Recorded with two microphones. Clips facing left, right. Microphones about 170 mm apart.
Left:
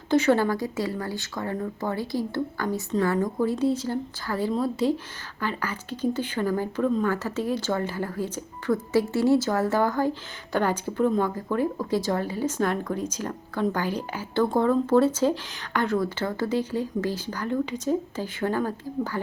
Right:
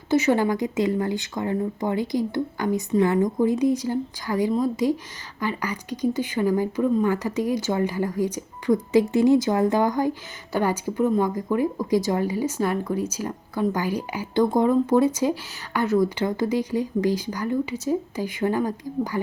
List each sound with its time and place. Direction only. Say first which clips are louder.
0.1 s a woman's voice: right 1 dB; 10° right (ahead or behind)